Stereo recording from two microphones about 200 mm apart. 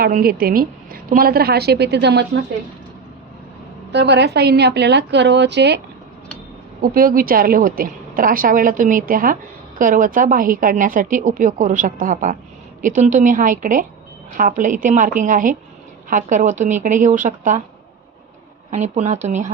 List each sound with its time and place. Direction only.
0.0 s a woman's voice: 50° right (ahead or behind)
3.9 s a woman's voice: 60° right (ahead or behind)
6.8 s a woman's voice: 45° right (ahead or behind)
18.7 s speech: 35° right (ahead or behind)